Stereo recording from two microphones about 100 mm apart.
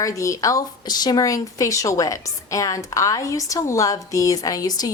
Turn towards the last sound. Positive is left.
turn(degrees=40)  # may be behind; listen again after turning